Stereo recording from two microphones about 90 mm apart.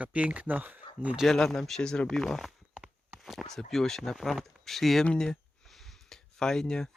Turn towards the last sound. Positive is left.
turn(degrees=5)  # may be behind; listen again after turning